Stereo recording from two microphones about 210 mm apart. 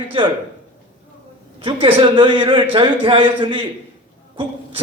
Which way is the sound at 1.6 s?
25° right (ahead or behind).